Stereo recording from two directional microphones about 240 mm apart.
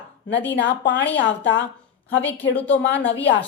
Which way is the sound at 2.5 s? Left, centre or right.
Centre.